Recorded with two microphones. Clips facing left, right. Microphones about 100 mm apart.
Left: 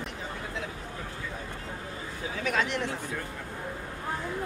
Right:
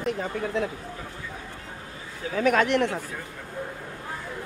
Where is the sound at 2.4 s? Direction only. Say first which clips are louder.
Right 8 dB; 55° right (ahead or behind).